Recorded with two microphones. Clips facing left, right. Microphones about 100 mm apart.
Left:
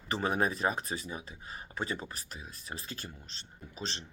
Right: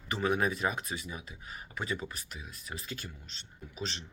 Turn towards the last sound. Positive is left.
turn(degrees=35)  # may be behind; listen again after turning